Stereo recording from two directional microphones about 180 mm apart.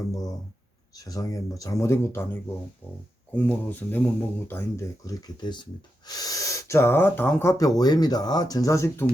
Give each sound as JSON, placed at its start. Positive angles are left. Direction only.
{"t": 0.1, "sound": "speech", "side_deg": 20}